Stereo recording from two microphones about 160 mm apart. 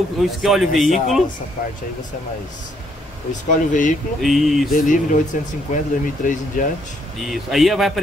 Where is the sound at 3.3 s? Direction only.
50° left (ahead or behind).